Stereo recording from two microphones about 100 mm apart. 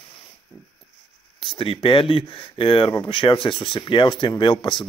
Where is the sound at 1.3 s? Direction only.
60° left (ahead or behind).